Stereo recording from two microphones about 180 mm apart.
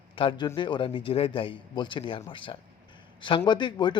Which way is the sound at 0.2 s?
25° left (ahead or behind).